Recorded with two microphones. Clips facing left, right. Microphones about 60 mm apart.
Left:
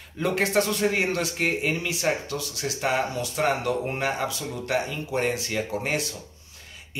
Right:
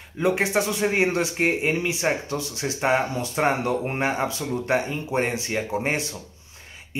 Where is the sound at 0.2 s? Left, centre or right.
Centre.